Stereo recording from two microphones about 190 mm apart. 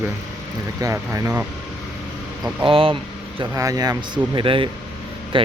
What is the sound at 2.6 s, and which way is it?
A man's voice, 30° right (ahead or behind).